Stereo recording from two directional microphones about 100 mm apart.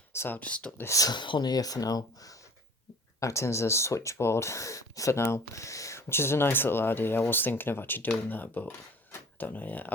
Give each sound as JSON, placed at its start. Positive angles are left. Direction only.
{"t": 0.1, "sound": "speech", "side_deg": 25}
{"t": 0.3, "sound": "speech", "side_deg": 15}
{"t": 0.9, "sound": "speech", "side_deg": 35}